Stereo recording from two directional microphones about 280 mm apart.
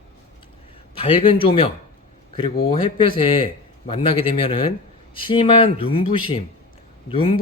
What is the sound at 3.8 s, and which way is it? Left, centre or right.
Speech, centre.